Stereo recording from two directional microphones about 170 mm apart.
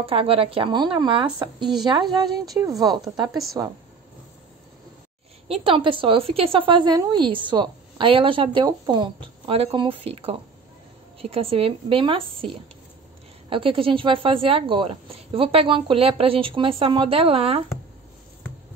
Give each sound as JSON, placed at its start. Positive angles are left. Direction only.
{"t": 0.0, "sound": "a woman's voice", "side_deg": -35}
{"t": 3.3, "sound": "speech", "side_deg": 0}
{"t": 5.5, "sound": "a woman's voice", "side_deg": -35}